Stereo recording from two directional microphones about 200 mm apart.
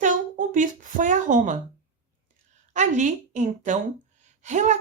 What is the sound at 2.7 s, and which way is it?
Speech, 35° right (ahead or behind).